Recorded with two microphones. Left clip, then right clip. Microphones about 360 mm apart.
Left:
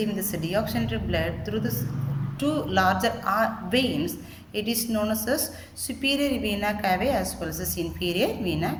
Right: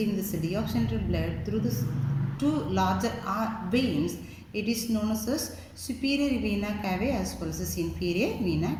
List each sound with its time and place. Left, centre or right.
0.3 s a woman's voice: left